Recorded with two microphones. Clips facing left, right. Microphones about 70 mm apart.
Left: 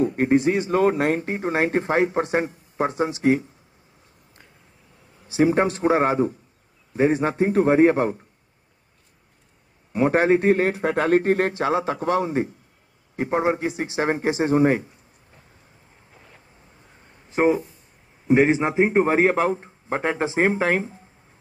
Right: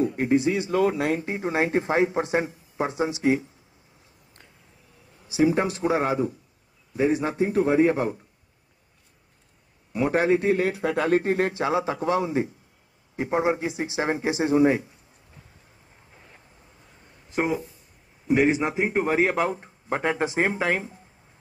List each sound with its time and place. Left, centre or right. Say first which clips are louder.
0.0 s speech: left 3 dB; left
5.3 s speech: left 3 dB; left
9.9 s speech: left 3 dB; left
17.3 s a man's voice: left 6 dB; left